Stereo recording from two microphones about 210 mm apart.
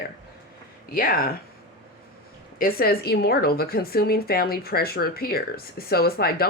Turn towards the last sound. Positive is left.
turn(degrees=45)  # may be behind; listen again after turning